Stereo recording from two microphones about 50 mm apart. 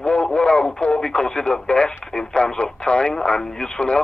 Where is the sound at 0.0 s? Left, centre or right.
Left.